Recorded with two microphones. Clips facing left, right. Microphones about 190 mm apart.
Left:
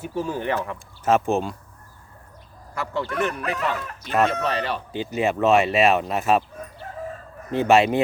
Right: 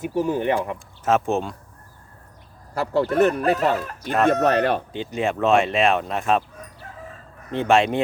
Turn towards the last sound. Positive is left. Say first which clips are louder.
# left 1 dB
turn(degrees=5)  # may be behind; listen again after turning